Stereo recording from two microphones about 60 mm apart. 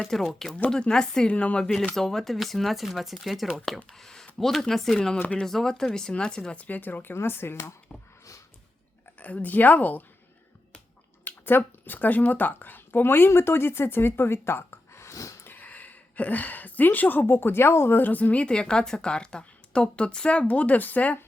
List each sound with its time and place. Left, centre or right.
0.0 s speech: centre
0.5 s speech: centre; by 7.7 s left
9.2 s speech: left
11.3 s speech: left
15.1 s dog: left
15.4 s speech: left